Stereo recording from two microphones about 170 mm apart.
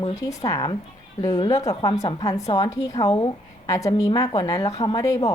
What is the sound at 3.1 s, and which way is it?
Speech, 35° left (ahead or behind).